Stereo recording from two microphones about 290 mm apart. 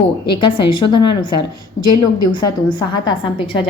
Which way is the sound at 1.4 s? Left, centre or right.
Left.